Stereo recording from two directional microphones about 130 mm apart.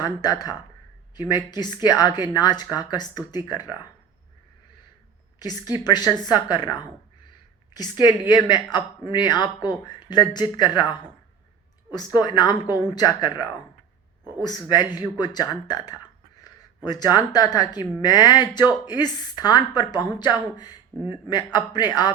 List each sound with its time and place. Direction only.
0.0 s a woman's voice: 30° left (ahead or behind)
5.4 s a woman's voice: 30° left (ahead or behind)